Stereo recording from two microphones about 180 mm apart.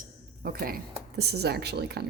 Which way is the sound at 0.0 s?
55° right (ahead or behind).